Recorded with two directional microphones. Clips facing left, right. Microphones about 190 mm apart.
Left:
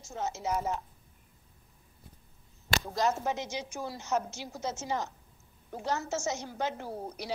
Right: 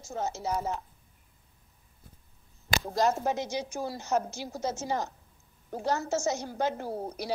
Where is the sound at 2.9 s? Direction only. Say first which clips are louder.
Right 4 dB; 35° right (ahead or behind).